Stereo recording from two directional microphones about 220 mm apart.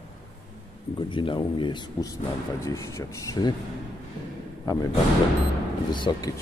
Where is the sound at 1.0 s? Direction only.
20° left (ahead or behind).